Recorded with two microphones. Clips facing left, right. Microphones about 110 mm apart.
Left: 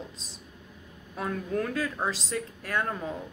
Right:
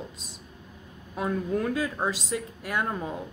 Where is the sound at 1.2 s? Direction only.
15° right (ahead or behind).